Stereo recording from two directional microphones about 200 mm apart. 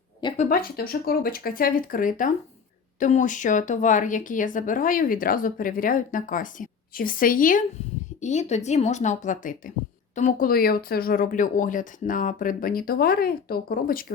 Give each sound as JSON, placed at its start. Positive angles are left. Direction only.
{"t": 0.3, "sound": "a woman's voice", "side_deg": 40}